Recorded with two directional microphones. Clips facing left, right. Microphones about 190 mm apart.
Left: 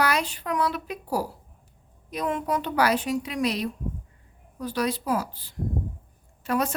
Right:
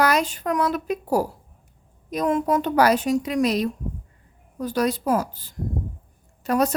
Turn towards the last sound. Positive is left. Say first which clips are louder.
# right 5 dB
turn(degrees=-40)  # may be behind; listen again after turning